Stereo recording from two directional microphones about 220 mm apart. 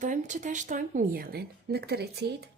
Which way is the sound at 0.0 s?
35° right (ahead or behind).